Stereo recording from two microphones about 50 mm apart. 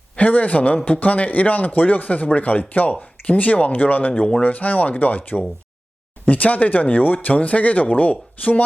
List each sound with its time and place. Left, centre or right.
0.2 s speech: left